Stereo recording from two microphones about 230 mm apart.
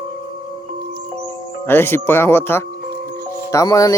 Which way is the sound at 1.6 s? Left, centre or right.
Centre.